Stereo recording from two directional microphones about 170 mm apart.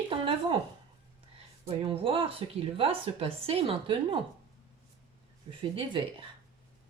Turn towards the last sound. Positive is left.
turn(degrees=-30)  # may be behind; listen again after turning